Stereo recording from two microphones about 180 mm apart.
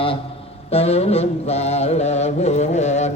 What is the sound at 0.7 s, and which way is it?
Mantra, 35° left (ahead or behind).